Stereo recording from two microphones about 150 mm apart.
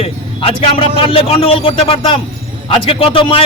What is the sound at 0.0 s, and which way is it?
Speech, 40° left (ahead or behind).